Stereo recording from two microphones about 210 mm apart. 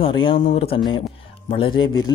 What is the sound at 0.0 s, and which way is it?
Speech, 25° left (ahead or behind).